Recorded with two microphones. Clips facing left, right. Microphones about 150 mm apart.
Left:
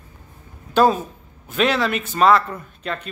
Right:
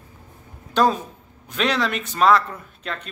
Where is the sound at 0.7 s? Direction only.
5° left (ahead or behind).